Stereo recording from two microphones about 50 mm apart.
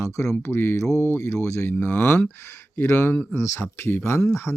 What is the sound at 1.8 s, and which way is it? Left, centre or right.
Speech, left.